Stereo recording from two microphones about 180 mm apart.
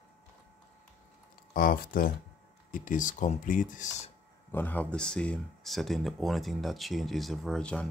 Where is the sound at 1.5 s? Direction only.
50° left (ahead or behind).